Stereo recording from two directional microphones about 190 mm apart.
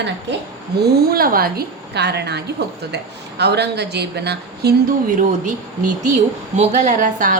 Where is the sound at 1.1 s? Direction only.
50° right (ahead or behind).